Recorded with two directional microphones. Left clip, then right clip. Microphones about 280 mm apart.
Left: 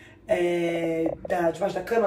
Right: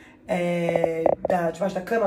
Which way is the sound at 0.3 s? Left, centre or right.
Centre.